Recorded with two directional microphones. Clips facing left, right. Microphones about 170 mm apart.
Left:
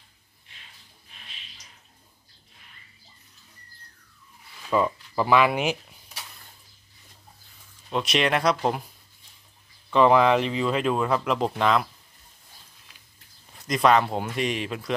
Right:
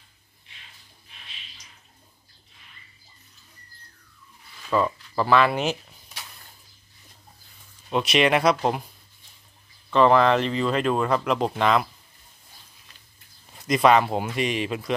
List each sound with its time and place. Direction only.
4.6 s speech: 10° left (ahead or behind)
7.9 s speech: 5° right (ahead or behind)
9.8 s speech: 10° left (ahead or behind)
13.7 s speech: 5° right (ahead or behind)